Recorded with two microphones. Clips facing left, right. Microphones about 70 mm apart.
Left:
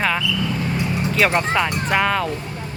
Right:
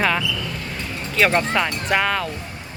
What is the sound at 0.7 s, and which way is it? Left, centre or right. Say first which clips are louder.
Vehicle: left 7 dB; centre.